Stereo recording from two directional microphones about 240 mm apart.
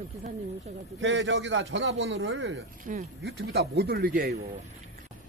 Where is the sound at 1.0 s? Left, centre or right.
Right.